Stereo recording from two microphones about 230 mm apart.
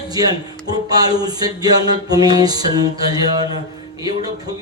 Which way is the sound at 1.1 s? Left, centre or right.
Centre.